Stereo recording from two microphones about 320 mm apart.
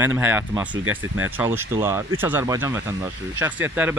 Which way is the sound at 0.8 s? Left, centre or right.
Right.